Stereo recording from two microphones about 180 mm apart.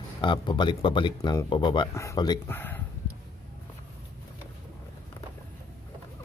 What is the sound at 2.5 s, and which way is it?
Speech, 10° left (ahead or behind).